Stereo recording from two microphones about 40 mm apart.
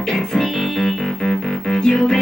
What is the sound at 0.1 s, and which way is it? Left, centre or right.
Music, centre.